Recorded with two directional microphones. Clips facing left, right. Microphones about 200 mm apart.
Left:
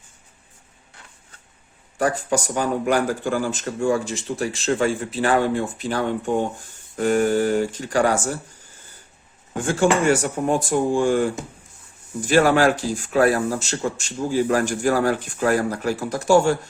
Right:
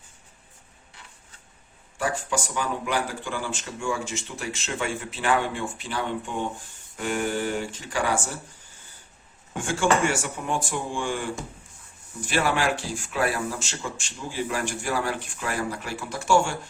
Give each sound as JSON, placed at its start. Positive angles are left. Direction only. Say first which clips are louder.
{"t": 2.0, "sound": "speech", "louder": "left 6 dB", "side_deg": 40}
{"t": 9.6, "sound": "speech", "louder": "left 4 dB", "side_deg": 40}
{"t": 12.3, "sound": "speech", "louder": "left 8 dB", "side_deg": 45}